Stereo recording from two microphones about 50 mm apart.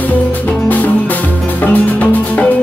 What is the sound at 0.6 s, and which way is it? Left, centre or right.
Music, left.